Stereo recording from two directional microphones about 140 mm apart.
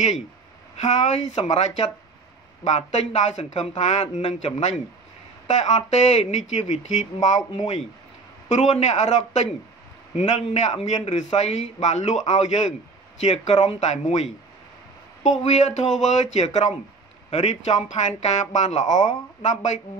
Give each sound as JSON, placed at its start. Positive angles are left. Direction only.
{"t": 0.7, "sound": "a man's voice", "side_deg": 55}
{"t": 8.5, "sound": "a man's voice", "side_deg": 55}
{"t": 15.4, "sound": "a man's voice", "side_deg": 55}